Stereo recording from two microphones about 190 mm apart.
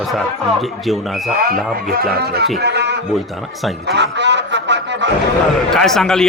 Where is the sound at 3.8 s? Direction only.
65° right (ahead or behind).